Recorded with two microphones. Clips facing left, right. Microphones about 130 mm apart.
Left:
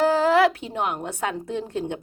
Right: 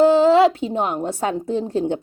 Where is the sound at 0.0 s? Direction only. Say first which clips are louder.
Right 5 dB; 25° right (ahead or behind).